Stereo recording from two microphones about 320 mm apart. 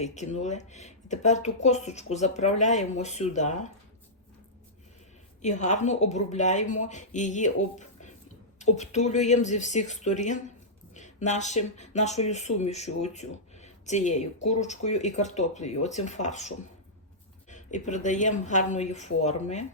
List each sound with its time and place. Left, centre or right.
0.0 s speech: left
5.4 s speech: left